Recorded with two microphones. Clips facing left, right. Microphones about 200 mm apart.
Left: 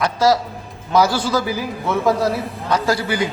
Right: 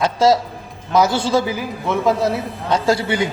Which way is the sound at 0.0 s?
25° right (ahead or behind).